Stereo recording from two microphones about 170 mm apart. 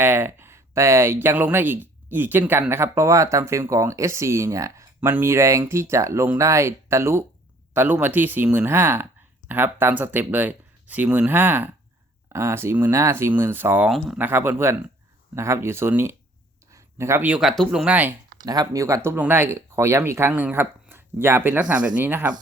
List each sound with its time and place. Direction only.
0.0 s speech: 15° right (ahead or behind)
18.4 s speech: 20° right (ahead or behind)